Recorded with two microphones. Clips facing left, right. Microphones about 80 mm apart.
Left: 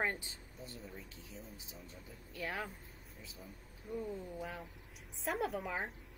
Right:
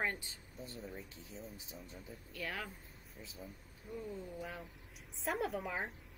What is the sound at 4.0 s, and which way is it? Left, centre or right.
Speech, centre.